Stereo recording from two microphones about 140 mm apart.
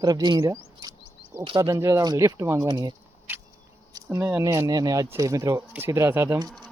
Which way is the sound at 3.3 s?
15° right (ahead or behind).